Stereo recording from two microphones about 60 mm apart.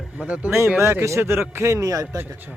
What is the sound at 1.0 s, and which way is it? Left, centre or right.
Speech, right.